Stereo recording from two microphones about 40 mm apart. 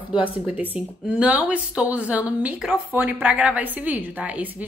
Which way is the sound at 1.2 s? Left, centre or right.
Right.